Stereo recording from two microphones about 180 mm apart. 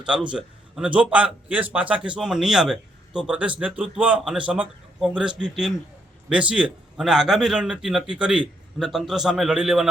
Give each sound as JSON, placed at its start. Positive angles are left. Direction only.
{"t": 0.0, "sound": "a man's voice", "side_deg": -5}